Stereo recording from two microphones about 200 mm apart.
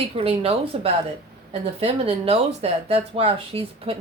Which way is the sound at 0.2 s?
30° right (ahead or behind).